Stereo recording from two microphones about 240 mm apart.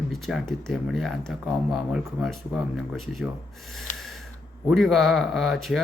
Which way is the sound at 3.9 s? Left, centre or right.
Left.